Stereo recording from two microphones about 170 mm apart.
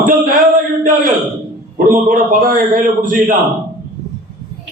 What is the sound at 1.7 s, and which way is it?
Speech, 55° right (ahead or behind).